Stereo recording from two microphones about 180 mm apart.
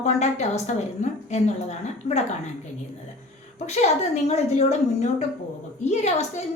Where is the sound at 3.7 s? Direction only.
40° left (ahead or behind).